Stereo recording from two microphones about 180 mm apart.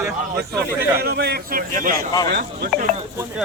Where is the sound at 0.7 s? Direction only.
65° right (ahead or behind).